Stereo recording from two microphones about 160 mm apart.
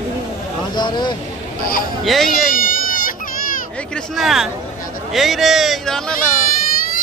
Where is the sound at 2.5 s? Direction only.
60° left (ahead or behind).